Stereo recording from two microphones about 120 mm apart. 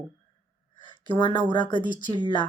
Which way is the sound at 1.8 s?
40° right (ahead or behind).